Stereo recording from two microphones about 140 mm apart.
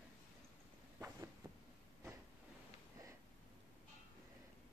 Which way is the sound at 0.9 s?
20° right (ahead or behind).